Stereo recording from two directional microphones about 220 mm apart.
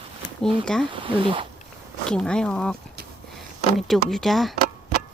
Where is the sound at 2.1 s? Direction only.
5° left (ahead or behind).